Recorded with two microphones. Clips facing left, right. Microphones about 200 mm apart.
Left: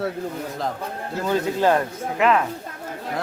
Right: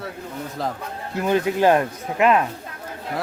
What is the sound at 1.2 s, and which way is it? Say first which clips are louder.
Speech: right 2 dB; 15° right (ahead or behind).